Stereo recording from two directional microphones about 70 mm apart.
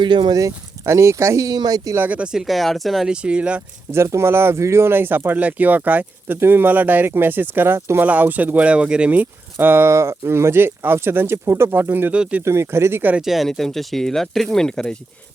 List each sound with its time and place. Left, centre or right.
0.2 s speech: right
0.4 s speech: right
1.5 s speech: right
2.0 s speech: right; by 3.1 s centre
3.1 s speech: centre
3.9 s speech: right
12.1 s speech: centre
12.5 s speech: right
13.2 s speech: centre